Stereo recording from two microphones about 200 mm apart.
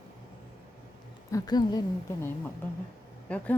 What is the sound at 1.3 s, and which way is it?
Speech, 20° left (ahead or behind).